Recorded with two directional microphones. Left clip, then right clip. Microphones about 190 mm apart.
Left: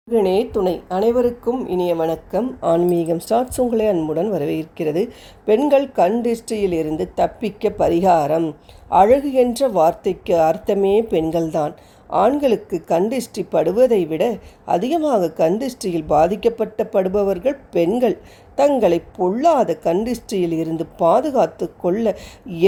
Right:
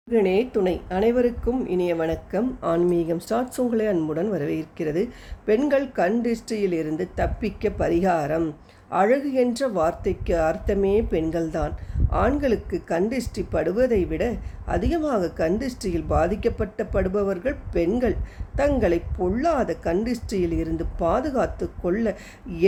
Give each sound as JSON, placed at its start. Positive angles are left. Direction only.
{"t": 0.1, "sound": "a woman's voice", "side_deg": 20}